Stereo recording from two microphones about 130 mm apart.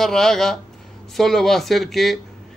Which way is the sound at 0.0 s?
5° left (ahead or behind).